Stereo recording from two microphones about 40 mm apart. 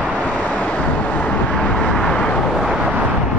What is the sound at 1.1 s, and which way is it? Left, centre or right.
Vehicle, left.